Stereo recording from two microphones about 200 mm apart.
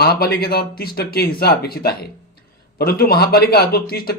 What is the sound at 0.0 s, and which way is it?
A man's voice, 55° left (ahead or behind).